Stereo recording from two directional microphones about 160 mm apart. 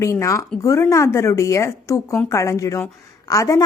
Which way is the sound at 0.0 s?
20° left (ahead or behind).